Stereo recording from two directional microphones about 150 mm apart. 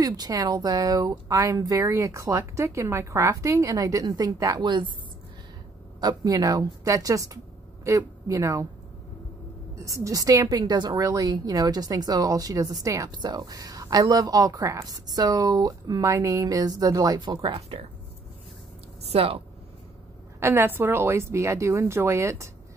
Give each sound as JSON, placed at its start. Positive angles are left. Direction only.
{"t": 0.0, "sound": "a woman's voice", "side_deg": -25}
{"t": 5.9, "sound": "a woman's voice", "side_deg": -25}
{"t": 9.8, "sound": "a woman's voice", "side_deg": -20}
{"t": 19.0, "sound": "speech", "side_deg": -40}
{"t": 20.3, "sound": "a woman's voice", "side_deg": -15}